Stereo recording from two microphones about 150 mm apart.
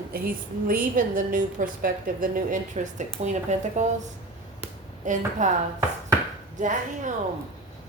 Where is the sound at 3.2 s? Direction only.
50° right (ahead or behind).